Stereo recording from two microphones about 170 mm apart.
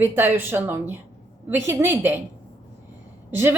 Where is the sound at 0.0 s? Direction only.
10° right (ahead or behind).